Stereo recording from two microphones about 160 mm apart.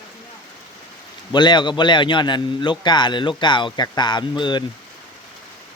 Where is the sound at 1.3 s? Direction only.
25° left (ahead or behind).